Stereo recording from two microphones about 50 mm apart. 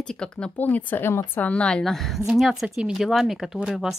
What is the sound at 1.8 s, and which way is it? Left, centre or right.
Speech, centre.